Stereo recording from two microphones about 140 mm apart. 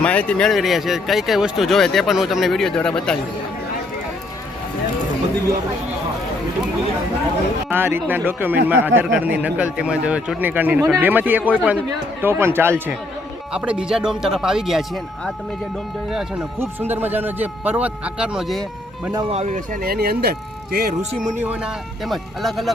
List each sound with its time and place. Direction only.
0.0 s speech: 10° left (ahead or behind)
7.7 s speech: 15° right (ahead or behind)
13.5 s speech: 5° right (ahead or behind)
16.6 s speech: 15° right (ahead or behind)
19.3 s speech: 55° right (ahead or behind); by 20.3 s 90° right
21.4 s speech: 10° right (ahead or behind)